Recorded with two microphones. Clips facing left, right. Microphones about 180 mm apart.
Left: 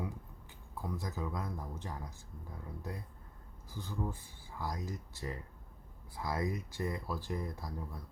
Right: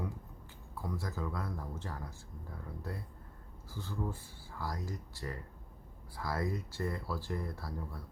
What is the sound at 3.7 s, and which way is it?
Speech, 15° left (ahead or behind).